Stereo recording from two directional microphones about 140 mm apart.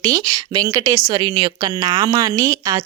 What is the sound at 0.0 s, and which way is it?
Speech, 25° right (ahead or behind).